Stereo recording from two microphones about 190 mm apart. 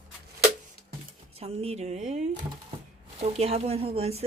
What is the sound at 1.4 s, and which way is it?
Speech, 30° right (ahead or behind).